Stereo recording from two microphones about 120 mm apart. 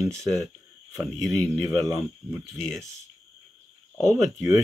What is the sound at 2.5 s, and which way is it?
Speech, centre (ahead or behind).